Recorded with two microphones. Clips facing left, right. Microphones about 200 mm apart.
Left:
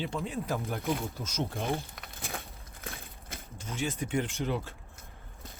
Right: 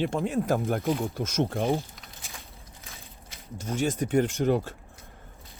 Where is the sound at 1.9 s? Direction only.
60° left (ahead or behind).